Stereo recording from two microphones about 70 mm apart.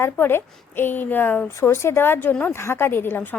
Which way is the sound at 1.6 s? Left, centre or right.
Left.